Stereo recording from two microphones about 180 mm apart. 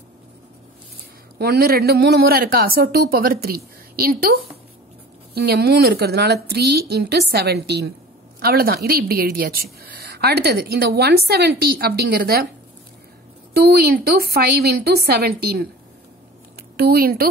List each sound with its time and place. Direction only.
1.4 s a woman's voice: 60° right (ahead or behind)
13.5 s a woman's voice: 60° right (ahead or behind)
16.7 s a woman's voice: 55° right (ahead or behind)